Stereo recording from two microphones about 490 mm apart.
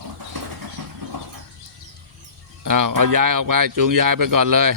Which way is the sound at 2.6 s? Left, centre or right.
Right.